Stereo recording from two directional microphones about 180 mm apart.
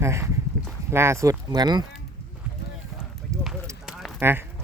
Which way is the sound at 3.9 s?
Centre (ahead or behind).